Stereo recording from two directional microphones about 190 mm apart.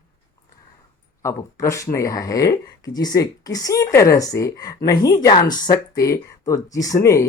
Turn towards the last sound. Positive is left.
turn(degrees=15)  # may be behind; listen again after turning